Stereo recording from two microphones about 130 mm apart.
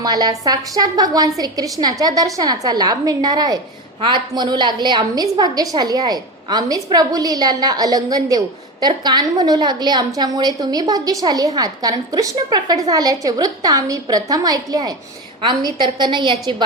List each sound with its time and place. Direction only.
0.0 s a woman's voice: 30° right (ahead or behind)